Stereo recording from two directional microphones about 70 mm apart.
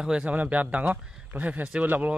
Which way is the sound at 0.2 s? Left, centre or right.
Right.